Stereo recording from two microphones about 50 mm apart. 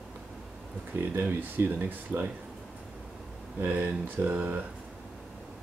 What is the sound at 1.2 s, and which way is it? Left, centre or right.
Speech, right.